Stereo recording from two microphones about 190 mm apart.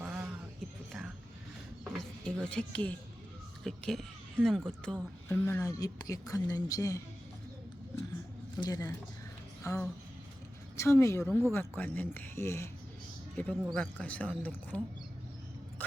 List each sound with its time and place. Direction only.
0.0 s a sound: 5° right (ahead or behind)
2.2 s speech: 5° left (ahead or behind)
5.3 s speech: 15° left (ahead or behind)
8.5 s speech: 20° left (ahead or behind)